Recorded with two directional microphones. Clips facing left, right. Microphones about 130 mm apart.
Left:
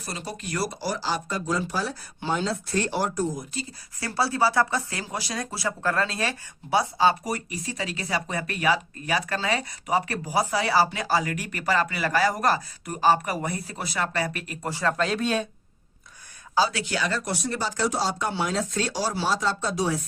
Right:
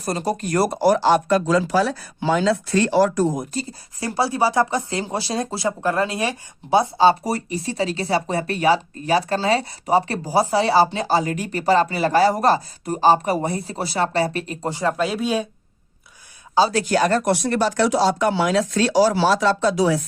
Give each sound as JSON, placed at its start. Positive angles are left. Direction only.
{"t": 0.0, "sound": "speech", "side_deg": -40}
{"t": 3.5, "sound": "speech", "side_deg": -40}
{"t": 4.0, "sound": "speech", "side_deg": -15}
{"t": 16.7, "sound": "speech", "side_deg": -45}